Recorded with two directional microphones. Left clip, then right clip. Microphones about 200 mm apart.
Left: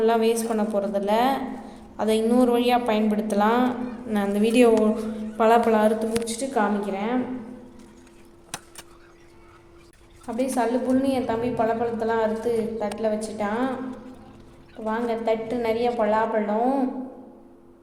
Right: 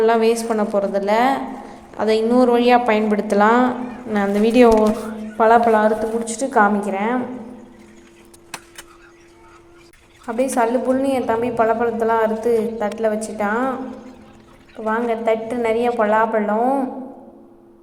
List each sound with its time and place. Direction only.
0.0 s a woman's voice: 10° right (ahead or behind)
10.2 s a woman's voice: 15° right (ahead or behind)
14.8 s a woman's voice: 10° right (ahead or behind)